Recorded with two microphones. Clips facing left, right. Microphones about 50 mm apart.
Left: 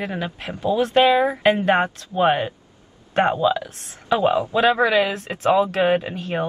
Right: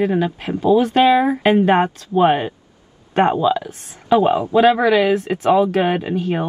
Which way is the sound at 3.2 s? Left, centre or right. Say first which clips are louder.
Right 3 dB; right.